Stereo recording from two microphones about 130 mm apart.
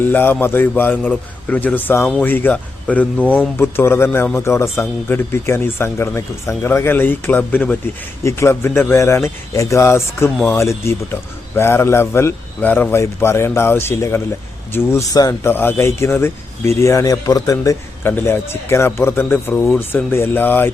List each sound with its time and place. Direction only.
0.0 s speech: 15° left (ahead or behind)
8.2 s speech: 20° left (ahead or behind)